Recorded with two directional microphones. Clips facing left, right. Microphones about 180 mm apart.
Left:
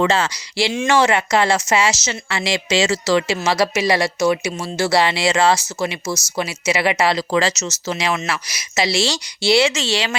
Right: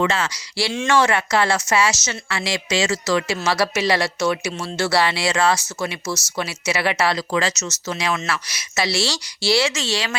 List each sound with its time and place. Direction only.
0.0 s speech: 30° left (ahead or behind)
7.2 s speech: 30° left (ahead or behind)